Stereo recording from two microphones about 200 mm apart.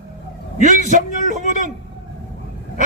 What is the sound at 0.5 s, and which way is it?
A man's voice, 40° right (ahead or behind).